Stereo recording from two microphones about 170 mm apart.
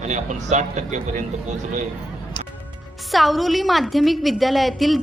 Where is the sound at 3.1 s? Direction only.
Centre (ahead or behind).